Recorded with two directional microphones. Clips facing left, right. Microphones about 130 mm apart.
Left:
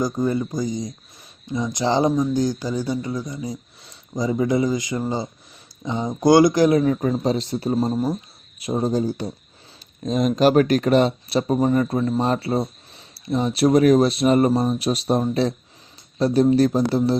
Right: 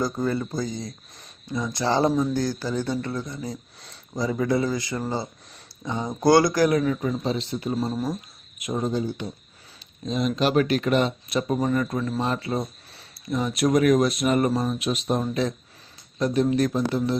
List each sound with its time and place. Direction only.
0.0 s speech: 15° left (ahead or behind); by 17.2 s 35° left (ahead or behind)